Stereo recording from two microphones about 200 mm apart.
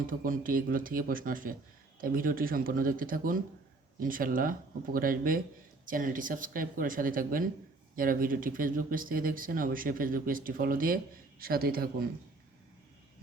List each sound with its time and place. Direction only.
0.1 s speech: 45° right (ahead or behind)